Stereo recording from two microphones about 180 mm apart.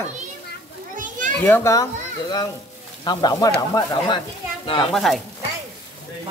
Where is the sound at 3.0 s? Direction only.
20° left (ahead or behind).